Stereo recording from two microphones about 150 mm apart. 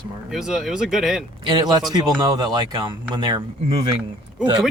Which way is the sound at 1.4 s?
30° right (ahead or behind).